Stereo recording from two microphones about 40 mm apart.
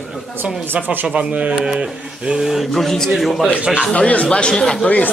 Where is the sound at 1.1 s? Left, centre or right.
Right.